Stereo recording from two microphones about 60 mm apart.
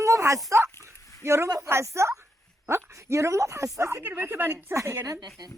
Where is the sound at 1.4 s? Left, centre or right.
Right.